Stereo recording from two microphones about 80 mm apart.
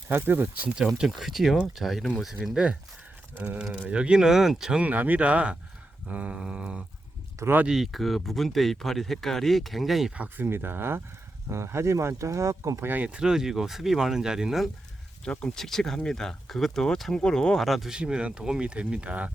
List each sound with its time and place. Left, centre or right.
0.1 s speech: right
0.9 s speech: centre
3.3 s speech: right
4.8 s speech: right
7.3 s speech: right
7.6 s speech: centre
10.2 s speech: right
12.8 s speech: right
13.1 s speech: centre
15.2 s speech: centre